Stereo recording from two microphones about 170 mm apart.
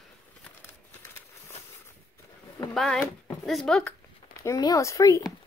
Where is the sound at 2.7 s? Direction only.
5° left (ahead or behind).